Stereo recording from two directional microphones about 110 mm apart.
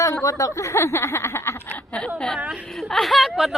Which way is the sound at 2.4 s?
10° right (ahead or behind).